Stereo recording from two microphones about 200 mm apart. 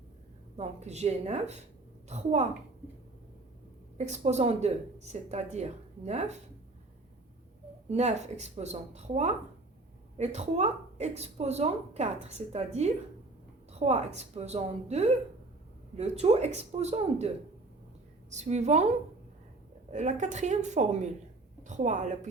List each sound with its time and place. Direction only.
0.5 s speech: 35° right (ahead or behind)
3.9 s speech: 35° right (ahead or behind)
7.9 s speech: 35° right (ahead or behind)
19.9 s speech: 35° right (ahead or behind)